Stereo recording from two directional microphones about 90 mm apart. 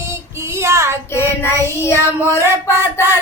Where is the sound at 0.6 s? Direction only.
30° right (ahead or behind).